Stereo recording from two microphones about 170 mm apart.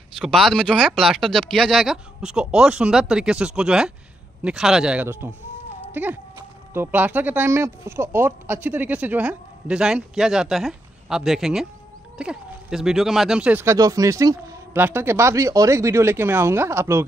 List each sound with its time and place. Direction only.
0.2 s speech: centre (ahead or behind); by 17.0 s 15° right (ahead or behind)